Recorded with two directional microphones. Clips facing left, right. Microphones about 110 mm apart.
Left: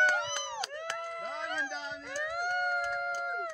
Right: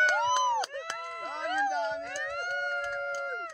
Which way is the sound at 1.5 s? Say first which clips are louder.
Right 8 dB; 50° right (ahead or behind).